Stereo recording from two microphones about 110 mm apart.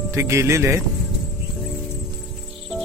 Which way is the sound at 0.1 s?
25° right (ahead or behind).